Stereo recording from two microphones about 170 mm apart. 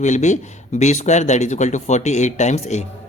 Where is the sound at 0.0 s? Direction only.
45° left (ahead or behind).